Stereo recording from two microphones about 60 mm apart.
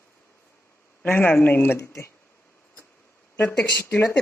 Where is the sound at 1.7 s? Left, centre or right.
Left.